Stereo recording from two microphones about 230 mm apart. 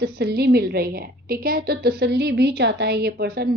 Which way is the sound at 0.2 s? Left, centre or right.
Right.